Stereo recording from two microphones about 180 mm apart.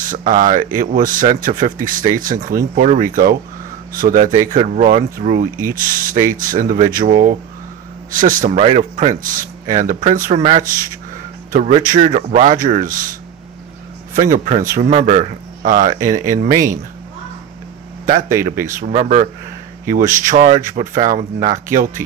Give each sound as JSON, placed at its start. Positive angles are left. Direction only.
{"t": 0.0, "sound": "speech", "side_deg": -50}
{"t": 11.5, "sound": "speech", "side_deg": -45}
{"t": 14.1, "sound": "speech", "side_deg": -45}
{"t": 18.7, "sound": "speech", "side_deg": -45}